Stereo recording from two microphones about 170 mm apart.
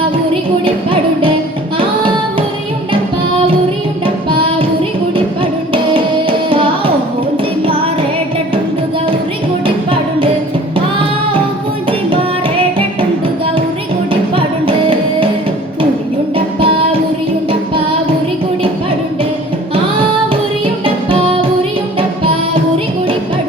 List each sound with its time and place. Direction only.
0.6 s music: 30° right (ahead or behind)
4.0 s music: 30° right (ahead or behind)
9.6 s music: 30° right (ahead or behind)
14.1 s music: 30° right (ahead or behind)
16.3 s music: 30° right (ahead or behind)
20.8 s music: 30° right (ahead or behind)